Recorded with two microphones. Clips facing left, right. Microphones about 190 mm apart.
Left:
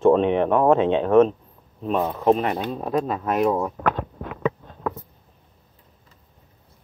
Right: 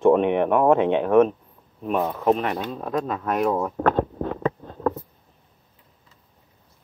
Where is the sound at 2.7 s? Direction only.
10° left (ahead or behind).